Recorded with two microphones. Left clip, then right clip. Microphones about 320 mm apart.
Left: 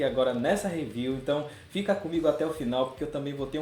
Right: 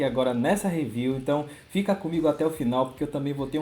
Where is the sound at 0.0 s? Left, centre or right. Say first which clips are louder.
Right 1 dB; right.